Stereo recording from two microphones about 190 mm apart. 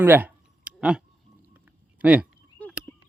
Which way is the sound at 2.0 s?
5° right (ahead or behind).